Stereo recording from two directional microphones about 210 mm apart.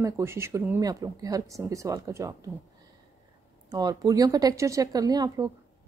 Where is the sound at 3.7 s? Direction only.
20° right (ahead or behind).